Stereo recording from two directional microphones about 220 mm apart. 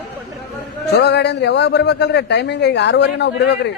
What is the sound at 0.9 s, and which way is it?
A man's voice, 50° left (ahead or behind).